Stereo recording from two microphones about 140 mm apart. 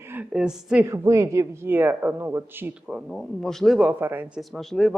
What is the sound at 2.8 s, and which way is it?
Speech, 5° right (ahead or behind).